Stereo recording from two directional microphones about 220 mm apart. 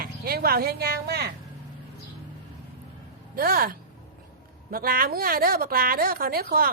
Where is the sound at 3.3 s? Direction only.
45° right (ahead or behind).